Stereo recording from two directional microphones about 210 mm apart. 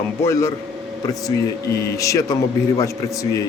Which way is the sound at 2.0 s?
15° left (ahead or behind).